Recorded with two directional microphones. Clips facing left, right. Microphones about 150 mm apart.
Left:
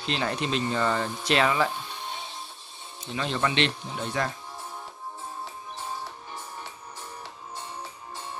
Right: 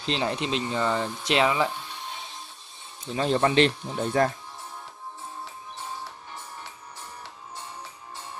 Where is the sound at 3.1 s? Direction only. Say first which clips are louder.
Right 6 dB; 40° right (ahead or behind).